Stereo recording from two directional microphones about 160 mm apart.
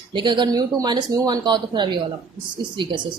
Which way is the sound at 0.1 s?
30° right (ahead or behind).